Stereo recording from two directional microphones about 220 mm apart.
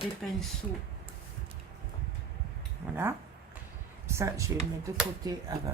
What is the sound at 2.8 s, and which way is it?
Speech, 10° right (ahead or behind).